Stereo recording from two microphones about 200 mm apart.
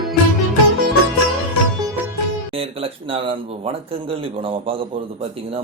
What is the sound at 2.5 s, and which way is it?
Speech, 30° right (ahead or behind).